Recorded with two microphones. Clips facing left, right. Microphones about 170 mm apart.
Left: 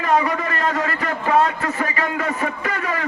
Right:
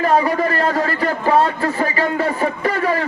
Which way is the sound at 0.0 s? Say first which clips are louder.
Right 4 dB; 35° right (ahead or behind).